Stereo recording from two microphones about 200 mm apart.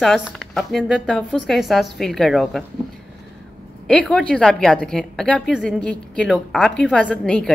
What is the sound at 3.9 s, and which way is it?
Speech, 5° left (ahead or behind).